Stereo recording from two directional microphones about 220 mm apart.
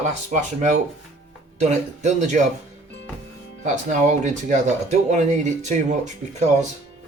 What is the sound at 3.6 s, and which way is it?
Speech, 35° right (ahead or behind).